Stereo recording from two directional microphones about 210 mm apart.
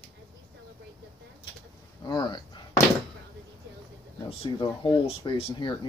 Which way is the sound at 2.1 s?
20° left (ahead or behind).